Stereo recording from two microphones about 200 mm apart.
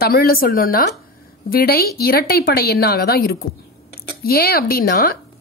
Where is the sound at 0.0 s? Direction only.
50° left (ahead or behind).